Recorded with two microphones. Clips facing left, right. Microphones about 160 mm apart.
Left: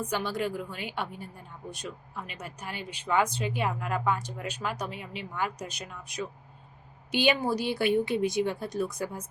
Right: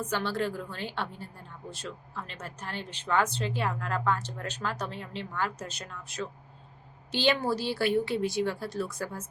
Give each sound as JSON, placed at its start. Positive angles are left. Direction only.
{"t": 0.0, "sound": "a woman's voice", "side_deg": 15}